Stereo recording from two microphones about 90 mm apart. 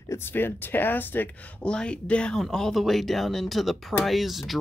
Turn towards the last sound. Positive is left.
turn(degrees=0)  # may be behind; listen again after turning